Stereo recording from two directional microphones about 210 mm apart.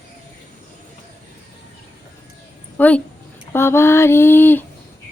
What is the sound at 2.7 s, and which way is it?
Speech, 5° left (ahead or behind).